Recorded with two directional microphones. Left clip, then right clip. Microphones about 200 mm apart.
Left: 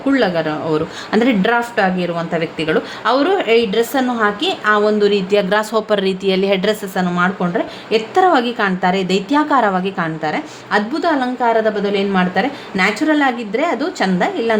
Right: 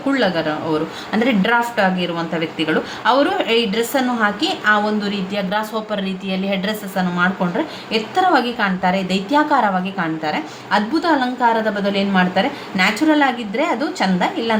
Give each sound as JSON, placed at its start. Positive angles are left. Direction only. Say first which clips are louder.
{"t": 0.1, "sound": "speech", "louder": "left 2 dB", "side_deg": 30}